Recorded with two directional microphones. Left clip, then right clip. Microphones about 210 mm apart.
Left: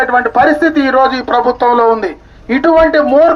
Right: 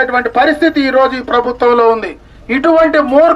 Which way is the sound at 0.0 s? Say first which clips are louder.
Left 2 dB; 25° right (ahead or behind).